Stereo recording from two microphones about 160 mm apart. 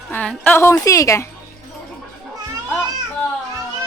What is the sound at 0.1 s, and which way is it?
Speech, 10° left (ahead or behind).